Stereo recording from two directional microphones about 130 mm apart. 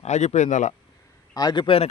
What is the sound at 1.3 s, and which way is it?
Speech, 30° left (ahead or behind).